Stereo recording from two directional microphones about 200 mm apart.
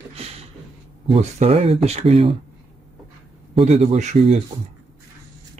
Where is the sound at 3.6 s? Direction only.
35° right (ahead or behind).